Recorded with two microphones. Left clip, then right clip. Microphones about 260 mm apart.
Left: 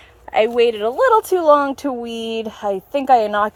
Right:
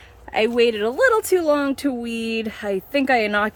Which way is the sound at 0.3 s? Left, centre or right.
Centre.